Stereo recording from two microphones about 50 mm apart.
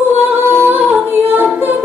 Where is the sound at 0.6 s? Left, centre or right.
Right.